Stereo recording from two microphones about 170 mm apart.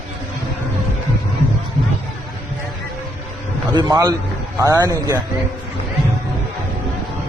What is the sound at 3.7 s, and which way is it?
Speech, 20° right (ahead or behind).